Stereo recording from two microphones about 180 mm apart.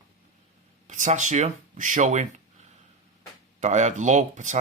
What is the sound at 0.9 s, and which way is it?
Speech, 40° right (ahead or behind).